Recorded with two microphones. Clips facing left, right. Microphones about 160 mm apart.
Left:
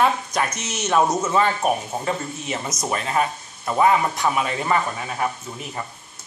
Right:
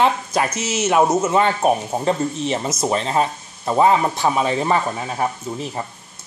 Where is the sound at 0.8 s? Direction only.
20° right (ahead or behind).